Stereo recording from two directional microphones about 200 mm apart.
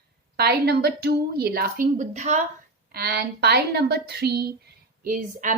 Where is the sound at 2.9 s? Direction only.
50° right (ahead or behind).